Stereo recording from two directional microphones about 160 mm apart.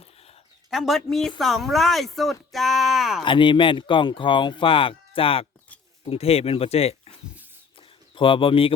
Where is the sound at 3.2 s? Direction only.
30° left (ahead or behind).